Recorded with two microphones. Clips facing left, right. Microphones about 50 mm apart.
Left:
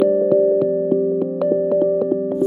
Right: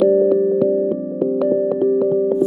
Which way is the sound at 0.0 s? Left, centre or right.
Centre.